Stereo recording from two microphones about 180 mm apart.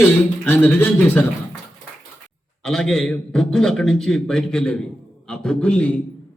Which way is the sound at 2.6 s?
5° left (ahead or behind).